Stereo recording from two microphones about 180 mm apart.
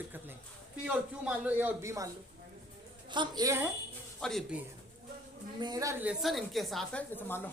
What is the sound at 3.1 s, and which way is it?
Speech, 25° right (ahead or behind).